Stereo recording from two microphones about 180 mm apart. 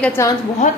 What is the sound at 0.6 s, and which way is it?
Speech, 40° left (ahead or behind).